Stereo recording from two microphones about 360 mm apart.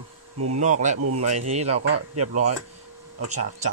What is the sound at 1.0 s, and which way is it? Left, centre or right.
Speech, right.